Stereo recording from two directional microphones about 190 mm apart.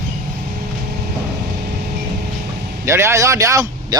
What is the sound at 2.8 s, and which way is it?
Speech, 15° right (ahead or behind).